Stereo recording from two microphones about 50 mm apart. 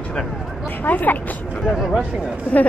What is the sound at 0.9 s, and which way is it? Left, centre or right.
Speech, left.